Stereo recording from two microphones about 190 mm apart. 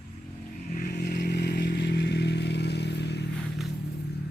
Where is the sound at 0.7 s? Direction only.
45° left (ahead or behind).